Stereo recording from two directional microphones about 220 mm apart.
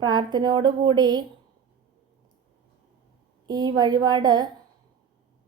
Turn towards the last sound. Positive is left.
turn(degrees=-20)  # may be behind; listen again after turning